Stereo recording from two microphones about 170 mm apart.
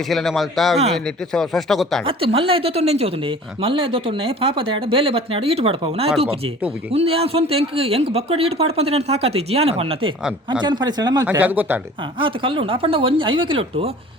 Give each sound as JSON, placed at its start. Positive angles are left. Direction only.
{"t": 0.1, "sound": "speech", "side_deg": 0}
{"t": 2.0, "sound": "speech", "side_deg": -35}
{"t": 11.3, "sound": "speech", "side_deg": -10}
{"t": 12.2, "sound": "speech", "side_deg": -30}